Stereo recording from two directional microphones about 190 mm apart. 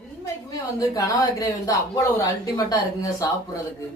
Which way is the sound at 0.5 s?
20° left (ahead or behind).